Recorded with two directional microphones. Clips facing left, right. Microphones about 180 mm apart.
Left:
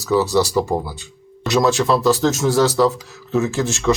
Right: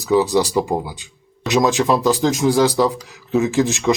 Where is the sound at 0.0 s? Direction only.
15° right (ahead or behind).